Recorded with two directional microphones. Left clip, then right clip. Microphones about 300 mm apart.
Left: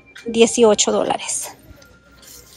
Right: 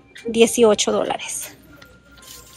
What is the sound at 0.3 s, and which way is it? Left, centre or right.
Speech, centre.